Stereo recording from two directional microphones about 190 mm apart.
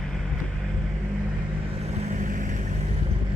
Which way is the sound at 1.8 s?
40° right (ahead or behind).